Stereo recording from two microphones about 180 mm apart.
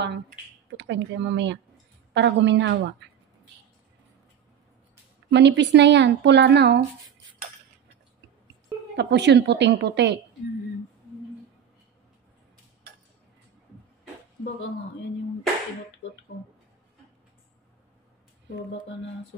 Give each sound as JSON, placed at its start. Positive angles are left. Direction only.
{"t": 0.7, "sound": "a woman's voice", "side_deg": -90}
{"t": 5.3, "sound": "a woman's voice", "side_deg": -75}
{"t": 8.9, "sound": "a woman's voice", "side_deg": -75}